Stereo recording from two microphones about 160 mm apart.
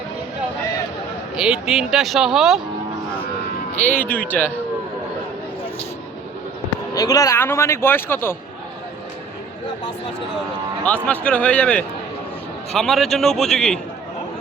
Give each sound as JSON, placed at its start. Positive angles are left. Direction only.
{"t": 1.4, "sound": "speech", "side_deg": -5}
{"t": 3.8, "sound": "speech", "side_deg": 10}
{"t": 6.9, "sound": "speech", "side_deg": 25}
{"t": 10.8, "sound": "speech", "side_deg": 10}